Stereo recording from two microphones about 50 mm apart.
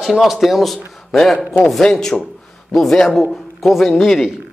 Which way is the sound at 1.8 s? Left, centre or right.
Centre.